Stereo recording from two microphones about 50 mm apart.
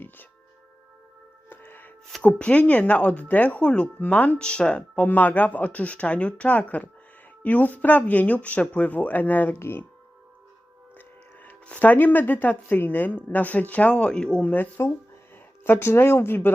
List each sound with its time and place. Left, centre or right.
1.5 s music: left
2.2 s speech: left
4.4 s speech: centre
4.9 s a woman's voice: left
9.6 s speech: left
11.4 s a woman's voice: left; by 14.4 s centre
14.4 s a woman's voice: left
15.6 s speech: left